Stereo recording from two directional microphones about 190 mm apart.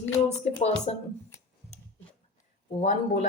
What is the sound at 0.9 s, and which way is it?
Speech, 35° left (ahead or behind).